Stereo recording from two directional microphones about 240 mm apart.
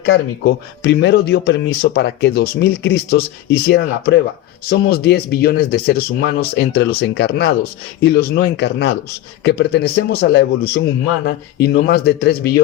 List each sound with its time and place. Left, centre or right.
0.0 s speech: left